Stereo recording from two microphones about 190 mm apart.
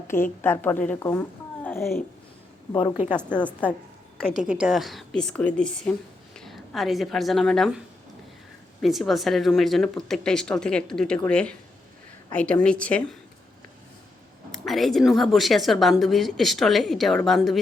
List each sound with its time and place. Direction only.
0.1 s a woman's voice: 10° left (ahead or behind)
2.7 s a woman's voice: 30° left (ahead or behind)
3.4 s a woman's voice: 10° left (ahead or behind)
8.8 s a woman's voice: centre (ahead or behind)
14.5 s a woman's voice: centre (ahead or behind)